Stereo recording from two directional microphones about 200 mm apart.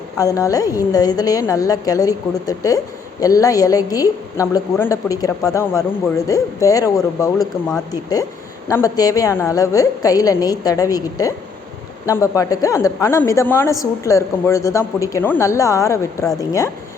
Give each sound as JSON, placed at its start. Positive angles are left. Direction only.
{"t": 0.2, "sound": "a woman's voice", "side_deg": 15}
{"t": 8.6, "sound": "a woman's voice", "side_deg": 15}